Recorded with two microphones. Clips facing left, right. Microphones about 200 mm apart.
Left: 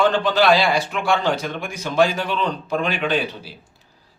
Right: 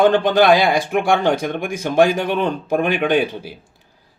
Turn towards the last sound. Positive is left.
turn(degrees=-50)  # may be behind; listen again after turning